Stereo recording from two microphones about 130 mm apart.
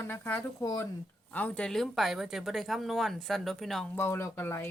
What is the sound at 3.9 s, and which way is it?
Speech, 20° left (ahead or behind).